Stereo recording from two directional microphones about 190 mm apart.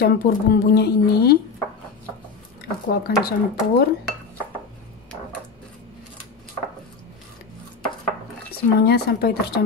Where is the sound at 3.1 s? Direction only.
55° left (ahead or behind).